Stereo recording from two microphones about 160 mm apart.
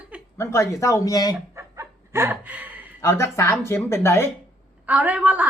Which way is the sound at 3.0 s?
20° left (ahead or behind).